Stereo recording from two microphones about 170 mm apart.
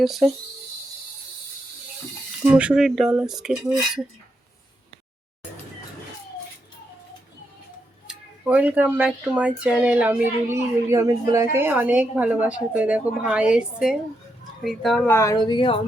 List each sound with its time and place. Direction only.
0.0 s dishes: centre (ahead or behind)
2.4 s dishes: 10° right (ahead or behind)
8.0 s speech: 10° right (ahead or behind)
14.6 s dishes: centre (ahead or behind)
15.0 s a woman's voice: 15° left (ahead or behind)